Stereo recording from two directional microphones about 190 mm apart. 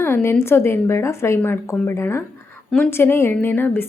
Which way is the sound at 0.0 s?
10° left (ahead or behind).